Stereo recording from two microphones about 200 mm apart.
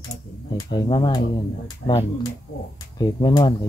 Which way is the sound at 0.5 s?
20° left (ahead or behind).